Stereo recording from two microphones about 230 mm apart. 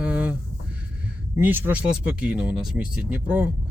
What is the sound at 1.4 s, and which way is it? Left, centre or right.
Speech, centre.